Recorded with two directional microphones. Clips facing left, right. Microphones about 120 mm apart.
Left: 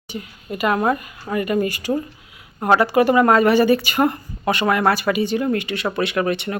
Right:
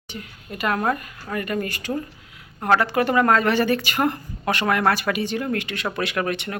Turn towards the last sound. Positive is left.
turn(degrees=0)  # may be behind; listen again after turning